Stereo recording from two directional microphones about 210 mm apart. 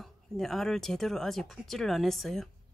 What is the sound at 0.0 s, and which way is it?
Speech, centre (ahead or behind).